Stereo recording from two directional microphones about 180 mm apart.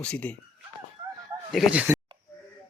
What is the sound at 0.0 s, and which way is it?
Speech, 10° left (ahead or behind).